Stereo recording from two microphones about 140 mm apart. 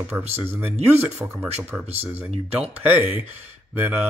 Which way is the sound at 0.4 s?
15° right (ahead or behind).